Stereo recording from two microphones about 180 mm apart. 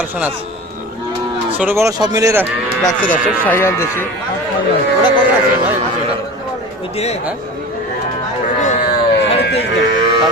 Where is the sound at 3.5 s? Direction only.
15° left (ahead or behind).